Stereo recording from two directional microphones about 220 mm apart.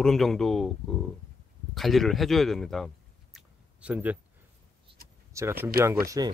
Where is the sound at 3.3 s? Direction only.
5° right (ahead or behind).